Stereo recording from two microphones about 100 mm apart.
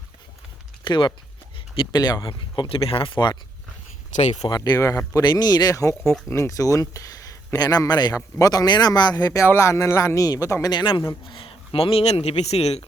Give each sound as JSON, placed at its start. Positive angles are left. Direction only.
{"t": 0.9, "sound": "speech", "side_deg": 55}
{"t": 2.6, "sound": "speech", "side_deg": 65}
{"t": 4.4, "sound": "speech", "side_deg": 45}
{"t": 5.2, "sound": "speech", "side_deg": 45}